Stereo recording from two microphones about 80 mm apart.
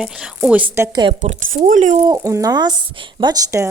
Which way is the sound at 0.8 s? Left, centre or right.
Right.